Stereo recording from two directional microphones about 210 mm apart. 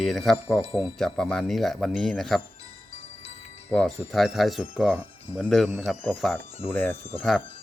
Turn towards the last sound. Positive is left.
turn(degrees=5)  # may be behind; listen again after turning